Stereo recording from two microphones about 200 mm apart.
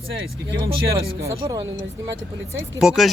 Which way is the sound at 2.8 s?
Centre (ahead or behind).